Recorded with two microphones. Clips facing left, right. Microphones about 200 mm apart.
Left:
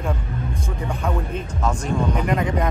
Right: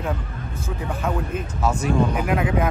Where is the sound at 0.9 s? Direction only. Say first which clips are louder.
Right 1 dB; 5° right (ahead or behind).